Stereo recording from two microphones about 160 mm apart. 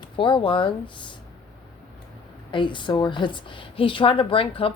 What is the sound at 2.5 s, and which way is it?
A woman's voice, 30° left (ahead or behind).